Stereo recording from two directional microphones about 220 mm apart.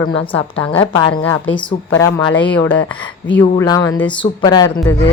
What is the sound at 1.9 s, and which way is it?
Speech, 10° left (ahead or behind).